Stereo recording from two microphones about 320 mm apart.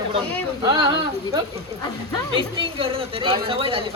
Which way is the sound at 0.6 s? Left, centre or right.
Centre.